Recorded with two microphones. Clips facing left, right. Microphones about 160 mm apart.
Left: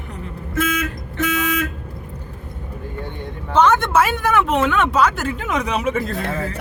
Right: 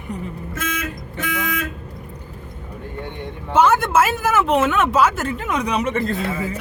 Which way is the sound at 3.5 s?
5° right (ahead or behind).